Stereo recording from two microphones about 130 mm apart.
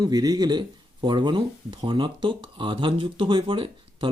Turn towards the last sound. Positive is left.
turn(degrees=-40)  # may be behind; listen again after turning